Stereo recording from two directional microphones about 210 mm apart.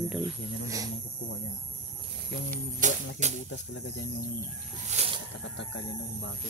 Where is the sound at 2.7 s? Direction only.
35° right (ahead or behind).